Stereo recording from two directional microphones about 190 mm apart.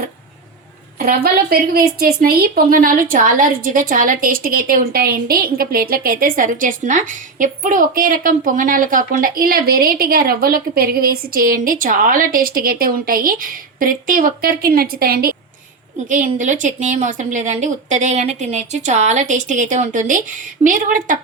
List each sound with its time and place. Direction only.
0.9 s a woman's voice: 50° right (ahead or behind)
16.0 s a woman's voice: 40° right (ahead or behind)